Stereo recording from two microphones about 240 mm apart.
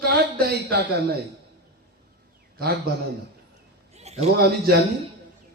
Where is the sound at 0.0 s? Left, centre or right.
Right.